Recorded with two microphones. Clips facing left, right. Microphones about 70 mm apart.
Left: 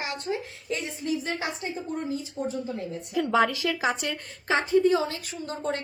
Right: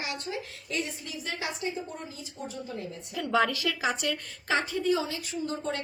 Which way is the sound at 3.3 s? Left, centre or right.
Centre.